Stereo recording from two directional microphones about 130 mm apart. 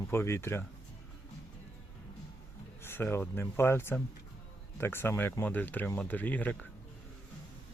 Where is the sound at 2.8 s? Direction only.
15° left (ahead or behind).